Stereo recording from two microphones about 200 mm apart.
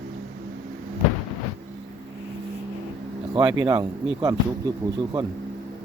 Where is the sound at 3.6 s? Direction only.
20° right (ahead or behind).